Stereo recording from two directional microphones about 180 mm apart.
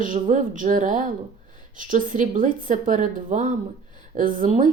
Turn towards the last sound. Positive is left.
turn(degrees=-45)  # may be behind; listen again after turning